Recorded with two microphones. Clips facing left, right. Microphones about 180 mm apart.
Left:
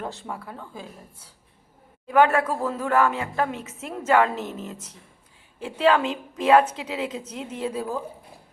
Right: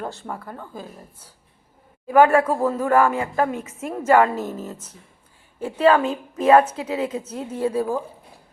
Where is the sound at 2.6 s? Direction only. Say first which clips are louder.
Right 5 dB; 10° right (ahead or behind).